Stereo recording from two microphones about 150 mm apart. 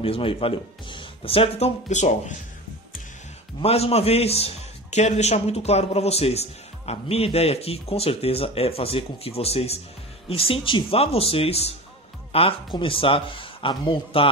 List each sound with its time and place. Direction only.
0.0 s speech: 40° left (ahead or behind); by 2.3 s 55° left (ahead or behind)
3.6 s a man's voice: 45° left (ahead or behind)